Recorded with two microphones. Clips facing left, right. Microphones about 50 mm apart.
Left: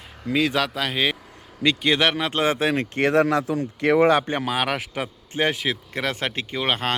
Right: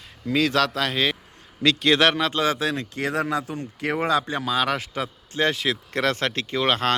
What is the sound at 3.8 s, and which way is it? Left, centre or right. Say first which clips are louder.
Speech: left 5 dB; left.